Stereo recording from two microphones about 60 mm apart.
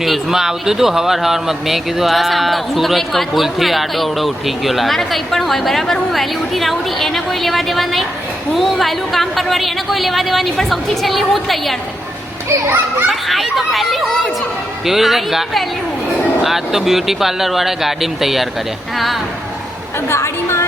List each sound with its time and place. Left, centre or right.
0.0 s speech: centre
12.6 s a child's voice: right
13.1 s speech: centre
20.1 s a woman's voice: left